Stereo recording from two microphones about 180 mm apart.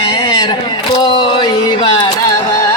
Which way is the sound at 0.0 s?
25° left (ahead or behind).